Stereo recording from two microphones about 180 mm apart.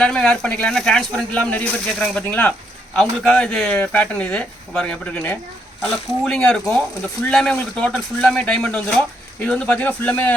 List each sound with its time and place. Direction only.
0.0 s speech: 5° left (ahead or behind)